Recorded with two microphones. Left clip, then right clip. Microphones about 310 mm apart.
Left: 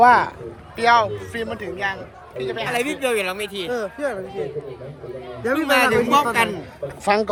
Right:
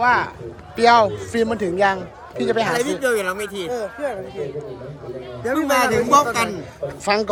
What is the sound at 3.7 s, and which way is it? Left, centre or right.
Speech, left.